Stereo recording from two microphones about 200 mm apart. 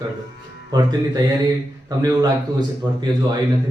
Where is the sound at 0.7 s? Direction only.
20° right (ahead or behind).